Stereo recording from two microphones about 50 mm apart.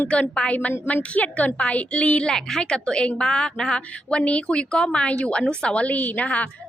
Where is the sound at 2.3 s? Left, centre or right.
Centre.